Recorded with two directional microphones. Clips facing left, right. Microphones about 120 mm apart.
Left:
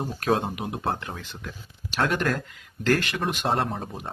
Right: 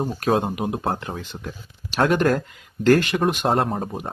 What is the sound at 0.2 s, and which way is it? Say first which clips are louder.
Speech: right 2 dB; 25° right (ahead or behind).